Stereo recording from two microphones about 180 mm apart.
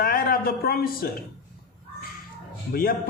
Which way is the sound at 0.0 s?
55° left (ahead or behind).